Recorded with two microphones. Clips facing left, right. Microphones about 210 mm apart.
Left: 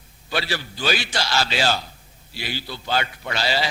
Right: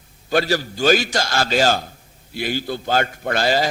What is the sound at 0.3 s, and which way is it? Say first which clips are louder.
A man's voice: right 8 dB; 45° right (ahead or behind).